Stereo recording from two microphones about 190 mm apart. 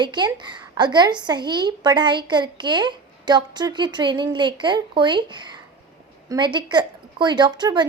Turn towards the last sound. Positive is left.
turn(degrees=-25)  # may be behind; listen again after turning